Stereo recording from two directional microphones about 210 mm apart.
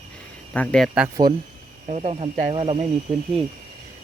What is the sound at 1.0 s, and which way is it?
Speech, 15° right (ahead or behind).